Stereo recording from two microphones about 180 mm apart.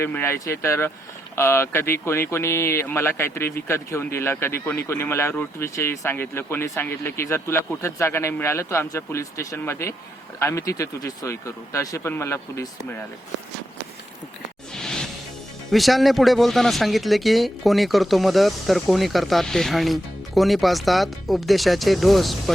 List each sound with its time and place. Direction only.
0.0 s speech: 15° left (ahead or behind)
14.7 s music: 5° left (ahead or behind)
15.7 s speech: centre (ahead or behind)